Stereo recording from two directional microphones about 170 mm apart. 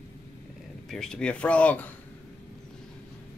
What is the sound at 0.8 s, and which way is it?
Speech, 5° left (ahead or behind).